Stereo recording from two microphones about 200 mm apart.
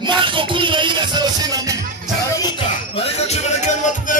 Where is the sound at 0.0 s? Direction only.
25° right (ahead or behind).